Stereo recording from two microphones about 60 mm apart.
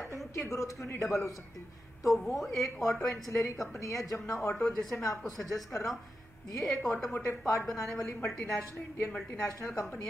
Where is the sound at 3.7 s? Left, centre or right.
Left.